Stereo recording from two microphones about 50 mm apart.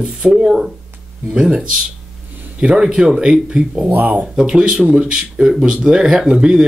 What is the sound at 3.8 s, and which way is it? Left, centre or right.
Speech, right.